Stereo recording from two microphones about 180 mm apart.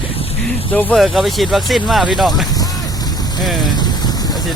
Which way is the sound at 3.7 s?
25° left (ahead or behind).